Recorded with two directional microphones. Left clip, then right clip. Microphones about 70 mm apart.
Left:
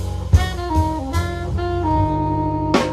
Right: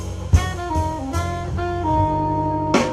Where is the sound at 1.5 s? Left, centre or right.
Right.